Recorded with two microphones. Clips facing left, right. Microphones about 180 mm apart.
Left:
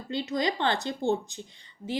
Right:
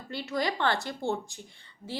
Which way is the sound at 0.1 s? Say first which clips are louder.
Left 2 dB; 20° left (ahead or behind).